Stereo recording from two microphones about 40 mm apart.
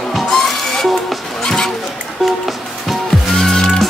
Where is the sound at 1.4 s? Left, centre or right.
Centre.